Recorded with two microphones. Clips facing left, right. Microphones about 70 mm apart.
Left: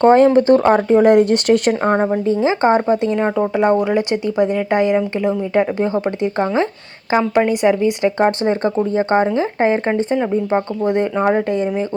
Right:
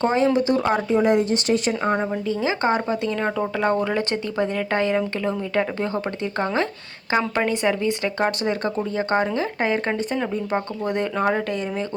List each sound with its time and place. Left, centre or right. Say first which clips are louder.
0.0 s speech: left 9 dB; left
1.8 s speech: left 7 dB; left